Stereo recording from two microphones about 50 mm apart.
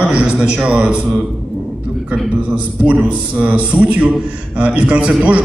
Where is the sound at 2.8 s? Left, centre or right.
Right.